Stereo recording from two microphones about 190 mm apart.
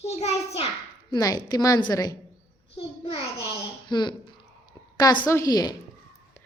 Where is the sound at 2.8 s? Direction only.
30° left (ahead or behind).